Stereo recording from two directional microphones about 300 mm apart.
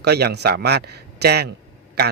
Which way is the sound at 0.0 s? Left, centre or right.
Right.